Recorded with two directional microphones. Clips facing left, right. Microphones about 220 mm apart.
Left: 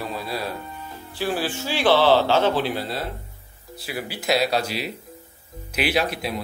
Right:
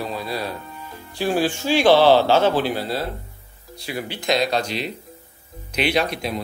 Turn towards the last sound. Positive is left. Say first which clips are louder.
# right 2 dB
turn(degrees=5)  # may be behind; listen again after turning